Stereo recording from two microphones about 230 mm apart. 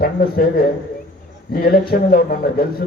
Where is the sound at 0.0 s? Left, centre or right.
Left.